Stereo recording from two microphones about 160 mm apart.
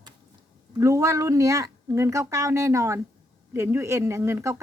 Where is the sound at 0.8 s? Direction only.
20° right (ahead or behind).